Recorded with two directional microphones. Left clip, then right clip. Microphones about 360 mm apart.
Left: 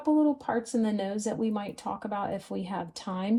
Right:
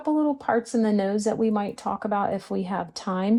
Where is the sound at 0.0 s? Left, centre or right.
Right.